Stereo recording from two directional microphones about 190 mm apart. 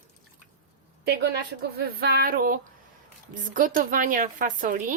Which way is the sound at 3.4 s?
45° right (ahead or behind).